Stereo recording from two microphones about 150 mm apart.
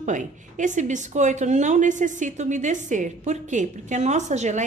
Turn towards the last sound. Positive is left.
turn(degrees=-50)  # may be behind; listen again after turning